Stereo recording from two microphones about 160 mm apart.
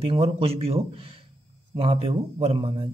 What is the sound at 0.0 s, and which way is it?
A man's voice, 40° right (ahead or behind).